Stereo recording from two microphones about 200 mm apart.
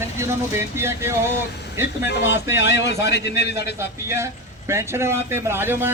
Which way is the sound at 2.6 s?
65° left (ahead or behind).